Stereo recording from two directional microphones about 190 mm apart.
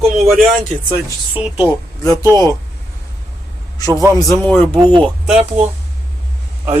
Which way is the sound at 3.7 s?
15° left (ahead or behind).